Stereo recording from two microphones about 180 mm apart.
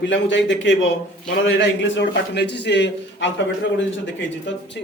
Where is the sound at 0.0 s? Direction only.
90° left.